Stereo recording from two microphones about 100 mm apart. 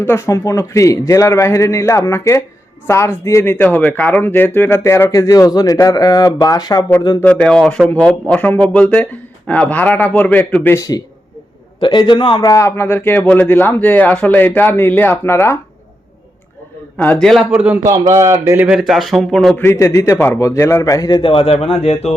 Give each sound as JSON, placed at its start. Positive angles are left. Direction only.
{"t": 0.0, "sound": "a man's voice", "side_deg": 25}
{"t": 7.3, "sound": "a man's voice", "side_deg": 10}
{"t": 10.8, "sound": "a man's voice", "side_deg": 35}
{"t": 11.8, "sound": "a man's voice", "side_deg": 50}
{"t": 12.4, "sound": "speech", "side_deg": 35}
{"t": 17.0, "sound": "a man's voice", "side_deg": 15}
{"t": 17.5, "sound": "a man's voice", "side_deg": -10}
{"t": 17.8, "sound": "speech", "side_deg": -35}
{"t": 18.5, "sound": "a man's voice", "side_deg": -15}
{"t": 18.8, "sound": "speech", "side_deg": 0}
{"t": 19.5, "sound": "speech", "side_deg": 25}
{"t": 21.2, "sound": "speech", "side_deg": 60}